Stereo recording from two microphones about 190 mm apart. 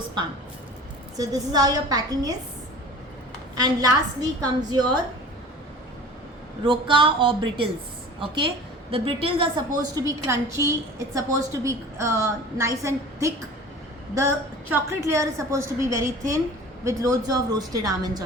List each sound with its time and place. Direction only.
1.1 s a woman's voice: 20° right (ahead or behind)
3.5 s a woman's voice: 20° right (ahead or behind)
6.7 s a woman's voice: 25° right (ahead or behind)
14.7 s a woman's voice: 15° right (ahead or behind)